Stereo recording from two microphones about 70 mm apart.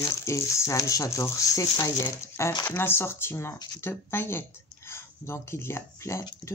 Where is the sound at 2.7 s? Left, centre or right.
Left.